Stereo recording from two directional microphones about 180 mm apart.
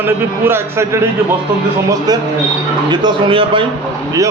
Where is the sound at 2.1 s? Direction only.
20° right (ahead or behind).